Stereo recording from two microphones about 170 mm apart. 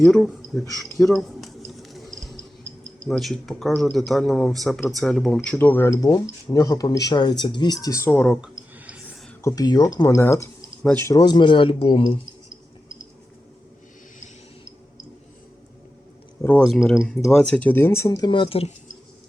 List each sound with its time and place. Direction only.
0.0 s speech: centre (ahead or behind)
0.7 s a sound: centre (ahead or behind)
3.1 s speech: centre (ahead or behind)
9.4 s speech: 20° left (ahead or behind)
16.4 s speech: 10° left (ahead or behind)
18.3 s speech: 30° left (ahead or behind)